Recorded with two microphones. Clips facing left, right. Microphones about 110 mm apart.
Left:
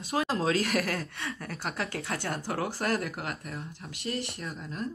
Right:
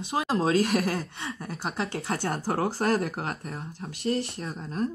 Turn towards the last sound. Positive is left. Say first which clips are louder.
# right 5 dB
turn(degrees=-35)  # may be behind; listen again after turning